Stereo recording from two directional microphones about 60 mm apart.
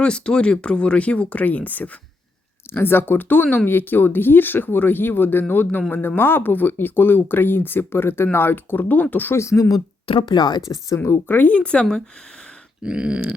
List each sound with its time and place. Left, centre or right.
0.0 s speech: centre; by 9.3 s left
9.3 s speech: left
10.7 s speech: left
11.3 s speech: left
12.8 s dog: centre